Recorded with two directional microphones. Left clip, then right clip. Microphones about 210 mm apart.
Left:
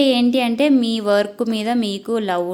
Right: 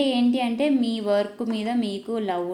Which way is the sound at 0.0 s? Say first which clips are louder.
Left 6 dB; 30° left (ahead or behind).